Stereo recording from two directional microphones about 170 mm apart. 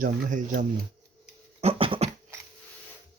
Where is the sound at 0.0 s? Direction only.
50° right (ahead or behind).